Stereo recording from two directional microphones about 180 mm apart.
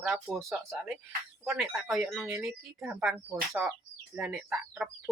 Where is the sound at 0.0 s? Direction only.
Centre (ahead or behind).